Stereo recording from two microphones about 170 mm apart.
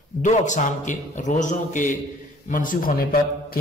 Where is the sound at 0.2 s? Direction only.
45° left (ahead or behind).